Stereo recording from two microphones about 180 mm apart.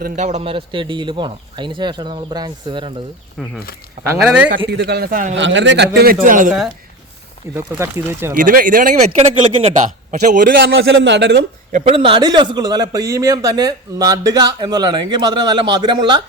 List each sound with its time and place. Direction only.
0.0 s a man's voice: 40° right (ahead or behind)
3.4 s a man's voice: centre (ahead or behind)
4.4 s a man's voice: 70° right (ahead or behind); by 5.3 s 55° right (ahead or behind)
5.4 s a man's voice: 90° right; by 6.5 s 45° right (ahead or behind)
7.5 s speech: 15° right (ahead or behind)
8.4 s a man's voice: 50° right (ahead or behind)
10.8 s a man's voice: 85° right
11.9 s a man's voice: 30° right (ahead or behind)